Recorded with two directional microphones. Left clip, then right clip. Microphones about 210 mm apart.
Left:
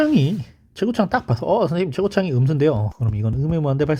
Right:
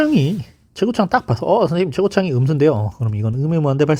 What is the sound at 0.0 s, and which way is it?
Speech, 10° right (ahead or behind).